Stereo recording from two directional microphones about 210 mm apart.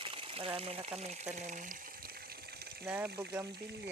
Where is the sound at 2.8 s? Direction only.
10° right (ahead or behind).